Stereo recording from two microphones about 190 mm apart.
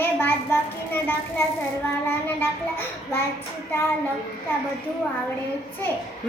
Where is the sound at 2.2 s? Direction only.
10° left (ahead or behind).